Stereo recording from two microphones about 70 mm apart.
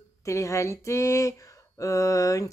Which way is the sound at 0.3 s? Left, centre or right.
Left.